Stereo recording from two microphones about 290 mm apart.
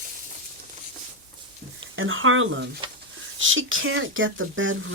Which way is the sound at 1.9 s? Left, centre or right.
Right.